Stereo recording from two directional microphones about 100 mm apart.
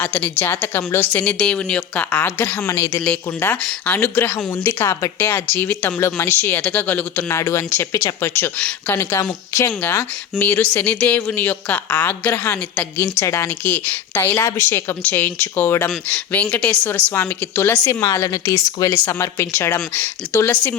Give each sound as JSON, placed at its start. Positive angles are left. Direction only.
{"t": 0.0, "sound": "a woman's voice", "side_deg": 15}
{"t": 1.1, "sound": "a woman's voice", "side_deg": 10}
{"t": 2.2, "sound": "a woman's voice", "side_deg": 25}
{"t": 7.3, "sound": "a woman's voice", "side_deg": 30}
{"t": 17.2, "sound": "a woman's voice", "side_deg": 25}